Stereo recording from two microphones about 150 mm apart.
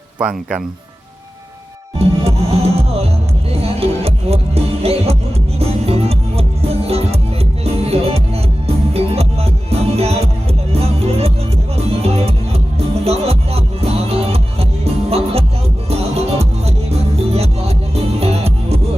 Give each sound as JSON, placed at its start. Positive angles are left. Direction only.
{"t": 0.2, "sound": "speech", "side_deg": -5}
{"t": 2.0, "sound": "music", "side_deg": -40}